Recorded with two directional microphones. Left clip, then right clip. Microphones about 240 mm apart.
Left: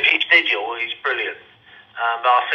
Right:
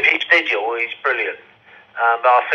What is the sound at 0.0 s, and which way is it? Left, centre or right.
Speech, centre.